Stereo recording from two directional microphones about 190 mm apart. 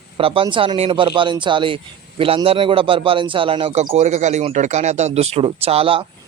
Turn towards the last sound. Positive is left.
turn(degrees=-30)  # may be behind; listen again after turning